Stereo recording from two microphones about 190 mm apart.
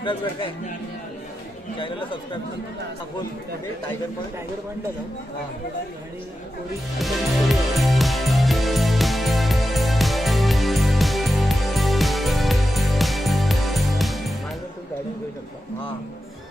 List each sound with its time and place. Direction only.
0.0 s speech: 25° left (ahead or behind)
1.8 s speech: 25° left (ahead or behind)
7.0 s music: centre (ahead or behind)